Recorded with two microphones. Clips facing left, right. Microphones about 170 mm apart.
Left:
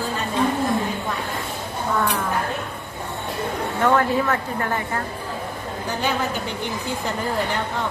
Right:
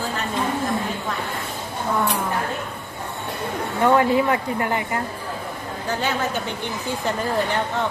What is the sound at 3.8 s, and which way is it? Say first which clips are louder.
Speech: right 2 dB; 10° right (ahead or behind).